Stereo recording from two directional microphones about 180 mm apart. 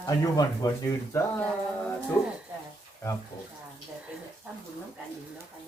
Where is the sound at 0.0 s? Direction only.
20° left (ahead or behind).